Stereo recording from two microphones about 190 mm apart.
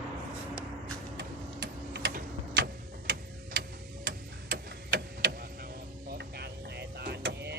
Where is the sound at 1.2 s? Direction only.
60° right (ahead or behind).